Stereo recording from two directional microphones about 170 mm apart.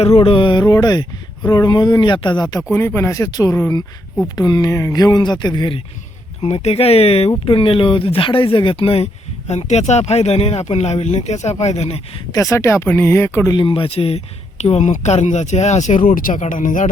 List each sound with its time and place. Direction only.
0.0 s speech: 35° left (ahead or behind)
6.4 s speech: 40° left (ahead or behind)
12.3 s speech: 20° left (ahead or behind); by 16.9 s 50° left (ahead or behind)